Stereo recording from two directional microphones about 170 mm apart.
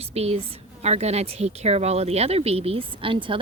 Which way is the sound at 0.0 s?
35° right (ahead or behind).